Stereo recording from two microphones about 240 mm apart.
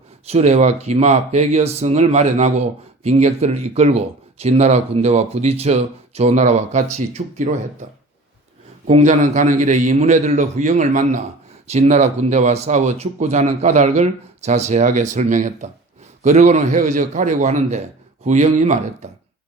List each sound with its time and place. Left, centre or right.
0.3 s speech: right
8.9 s speech: right